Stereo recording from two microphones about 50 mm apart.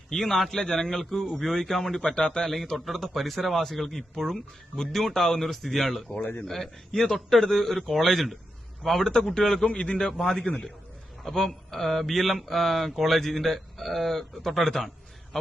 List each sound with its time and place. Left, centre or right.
0.1 s speech: centre
2.4 s speech: centre
9.6 s a man's voice: left
10.1 s speech: centre